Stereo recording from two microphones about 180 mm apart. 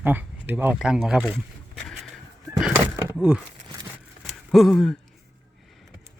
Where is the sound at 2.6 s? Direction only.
10° right (ahead or behind).